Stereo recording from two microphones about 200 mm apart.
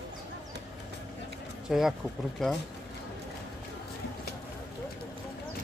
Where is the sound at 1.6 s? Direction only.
Centre (ahead or behind).